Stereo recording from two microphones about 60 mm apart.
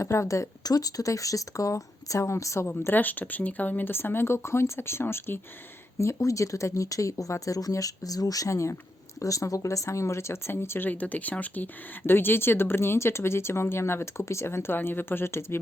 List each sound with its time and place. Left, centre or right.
0.0 s speech: left
0.6 s speech: left
2.8 s speech: left
6.0 s speech: left
9.2 s speech: left
10.8 s speech: left